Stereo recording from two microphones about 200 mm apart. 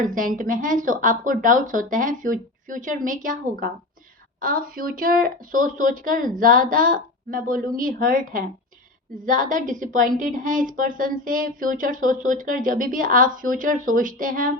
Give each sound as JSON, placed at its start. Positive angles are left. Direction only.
{"t": 0.0, "sound": "a woman's voice", "side_deg": -40}
{"t": 4.4, "sound": "a woman's voice", "side_deg": -45}